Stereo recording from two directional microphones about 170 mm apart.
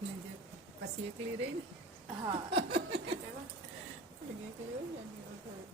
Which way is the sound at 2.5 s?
35° right (ahead or behind).